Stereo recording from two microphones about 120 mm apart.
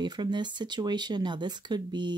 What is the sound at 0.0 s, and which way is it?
Speech, 40° right (ahead or behind).